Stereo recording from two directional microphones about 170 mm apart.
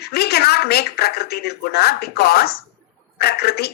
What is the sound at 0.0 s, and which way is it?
Speech, 70° left (ahead or behind).